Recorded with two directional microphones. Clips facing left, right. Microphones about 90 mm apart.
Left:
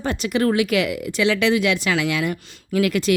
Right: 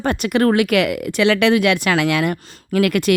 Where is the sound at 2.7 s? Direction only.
60° right (ahead or behind).